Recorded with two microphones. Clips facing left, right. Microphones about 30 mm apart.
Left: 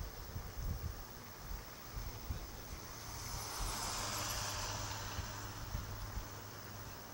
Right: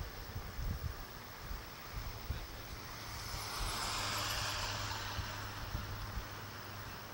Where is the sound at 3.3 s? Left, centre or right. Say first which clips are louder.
Right 3 dB; right.